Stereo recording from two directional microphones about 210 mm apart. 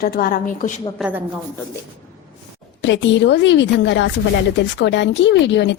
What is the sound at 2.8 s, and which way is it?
A woman's voice, 60° left (ahead or behind).